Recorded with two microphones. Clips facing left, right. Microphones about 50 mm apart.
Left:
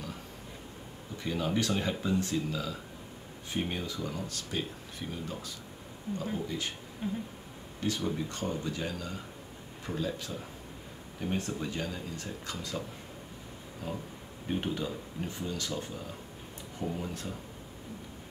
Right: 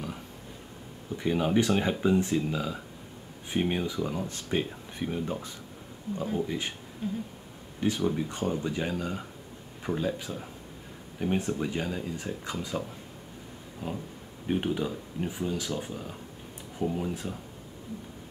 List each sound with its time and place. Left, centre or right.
1.1 s speech: right
7.0 s a sound: centre
7.8 s speech: right
16.8 s speech: centre